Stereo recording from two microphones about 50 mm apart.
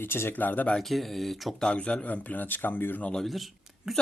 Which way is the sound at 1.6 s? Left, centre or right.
Left.